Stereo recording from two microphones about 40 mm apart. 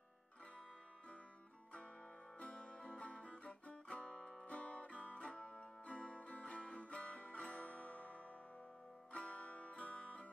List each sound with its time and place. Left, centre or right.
2.3 s music: left
5.2 s music: left